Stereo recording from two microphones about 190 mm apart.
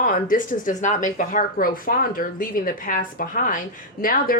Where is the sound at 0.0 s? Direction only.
45° left (ahead or behind).